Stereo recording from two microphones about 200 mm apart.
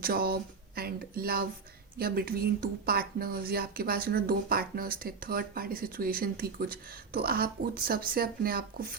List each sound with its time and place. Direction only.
0.0 s speech: 50° right (ahead or behind)